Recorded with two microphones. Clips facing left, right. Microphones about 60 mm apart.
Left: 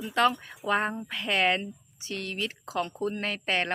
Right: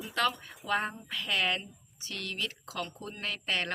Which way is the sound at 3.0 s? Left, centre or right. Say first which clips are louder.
Left 8 dB; left.